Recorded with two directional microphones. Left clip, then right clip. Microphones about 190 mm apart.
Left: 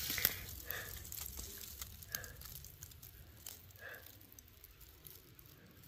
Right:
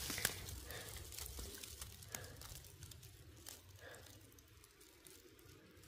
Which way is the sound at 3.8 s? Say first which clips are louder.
Left 6 dB; 15° right (ahead or behind).